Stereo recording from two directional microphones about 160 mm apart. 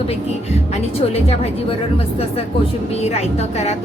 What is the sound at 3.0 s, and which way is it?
Speech, 40° left (ahead or behind).